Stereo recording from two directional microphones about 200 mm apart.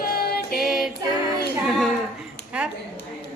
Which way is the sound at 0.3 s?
50° left (ahead or behind).